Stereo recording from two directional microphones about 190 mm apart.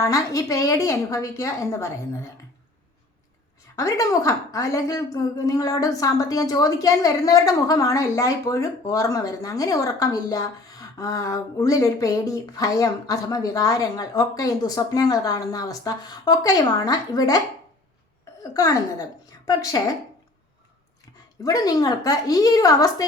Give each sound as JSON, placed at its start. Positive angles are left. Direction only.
{"t": 0.0, "sound": "a woman's voice", "side_deg": 15}
{"t": 3.8, "sound": "a woman's voice", "side_deg": 15}
{"t": 18.5, "sound": "a woman's voice", "side_deg": 20}
{"t": 21.4, "sound": "a woman's voice", "side_deg": 20}